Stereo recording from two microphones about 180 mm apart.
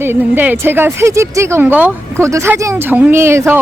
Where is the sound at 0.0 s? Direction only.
10° right (ahead or behind).